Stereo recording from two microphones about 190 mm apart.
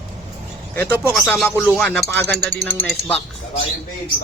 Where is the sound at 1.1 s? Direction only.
Centre (ahead or behind).